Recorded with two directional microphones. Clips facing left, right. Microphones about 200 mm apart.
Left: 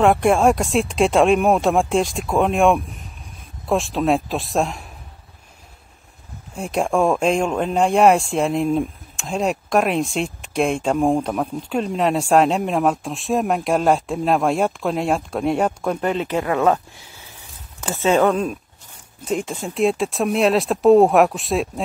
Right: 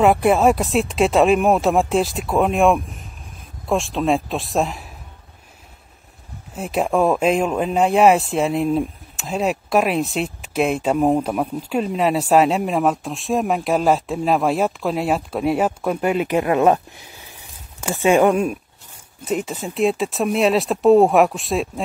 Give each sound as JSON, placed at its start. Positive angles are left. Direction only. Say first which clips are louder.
{"t": 0.0, "sound": "speech", "louder": "even", "side_deg": -5}
{"t": 6.5, "sound": "speech", "louder": "even", "side_deg": -5}